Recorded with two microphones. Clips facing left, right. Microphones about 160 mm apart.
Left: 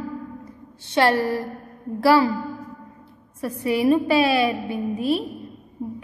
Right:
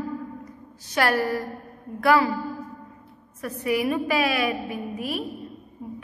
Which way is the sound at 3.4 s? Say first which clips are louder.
Left 3 dB; 30° left (ahead or behind).